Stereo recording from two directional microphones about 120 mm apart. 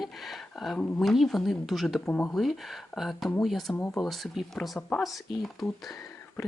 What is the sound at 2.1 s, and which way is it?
Speech, 15° left (ahead or behind).